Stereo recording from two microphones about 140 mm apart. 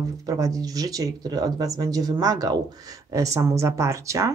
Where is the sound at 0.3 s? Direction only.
25° right (ahead or behind).